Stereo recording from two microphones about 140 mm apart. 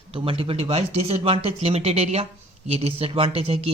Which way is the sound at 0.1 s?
40° right (ahead or behind).